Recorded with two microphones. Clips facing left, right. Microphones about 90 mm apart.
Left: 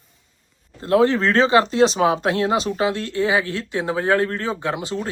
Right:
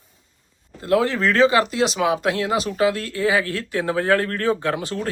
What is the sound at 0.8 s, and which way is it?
Speech, 30° left (ahead or behind).